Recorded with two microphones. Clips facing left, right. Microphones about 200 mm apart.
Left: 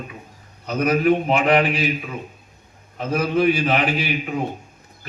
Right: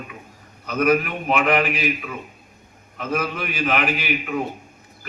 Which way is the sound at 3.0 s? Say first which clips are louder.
Left 6 dB; 30° left (ahead or behind).